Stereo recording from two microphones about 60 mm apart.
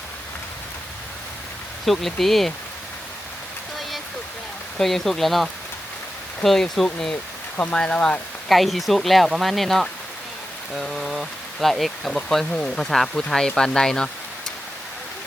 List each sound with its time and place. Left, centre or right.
1.9 s speech: centre
4.8 s speech: centre
8.4 s speech: centre
12.8 s speech: centre